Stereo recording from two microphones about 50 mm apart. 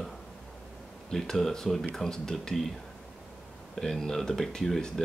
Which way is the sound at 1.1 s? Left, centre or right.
Centre.